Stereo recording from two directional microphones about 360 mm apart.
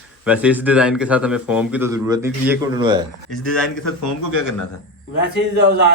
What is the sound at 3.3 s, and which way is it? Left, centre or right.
Speech, centre.